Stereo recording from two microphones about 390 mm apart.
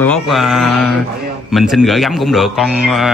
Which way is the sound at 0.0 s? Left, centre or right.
Centre.